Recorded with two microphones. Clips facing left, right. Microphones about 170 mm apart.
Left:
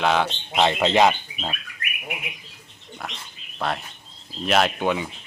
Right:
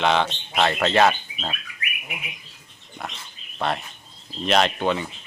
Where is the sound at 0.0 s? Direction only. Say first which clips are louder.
Even; 5° left (ahead or behind).